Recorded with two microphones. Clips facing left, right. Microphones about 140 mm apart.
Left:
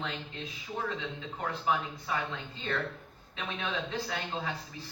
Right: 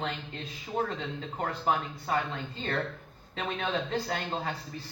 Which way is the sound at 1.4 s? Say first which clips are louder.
Right 2 dB; 45° right (ahead or behind).